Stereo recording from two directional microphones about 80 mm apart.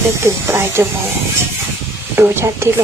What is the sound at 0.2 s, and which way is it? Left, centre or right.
Speech, right.